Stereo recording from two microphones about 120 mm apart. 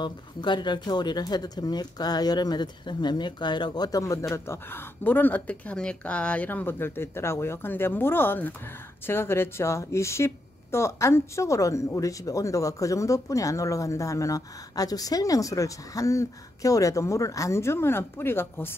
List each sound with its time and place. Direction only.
0.0 s a woman's voice: 40° left (ahead or behind); by 18.8 s 20° left (ahead or behind)